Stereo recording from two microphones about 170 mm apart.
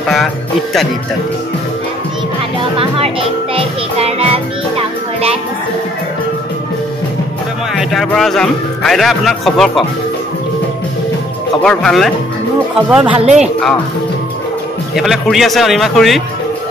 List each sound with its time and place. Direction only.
2.8 s music: 35° right (ahead or behind)
7.7 s a man's voice: centre (ahead or behind)
11.6 s a man's voice: 5° left (ahead or behind)
12.7 s speech: 10° right (ahead or behind)
13.4 s a man's voice: centre (ahead or behind)
15.0 s a man's voice: centre (ahead or behind)